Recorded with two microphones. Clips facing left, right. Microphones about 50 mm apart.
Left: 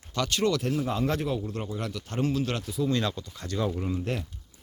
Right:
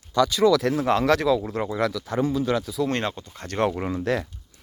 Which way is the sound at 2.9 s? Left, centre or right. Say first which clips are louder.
Right 2 dB; right.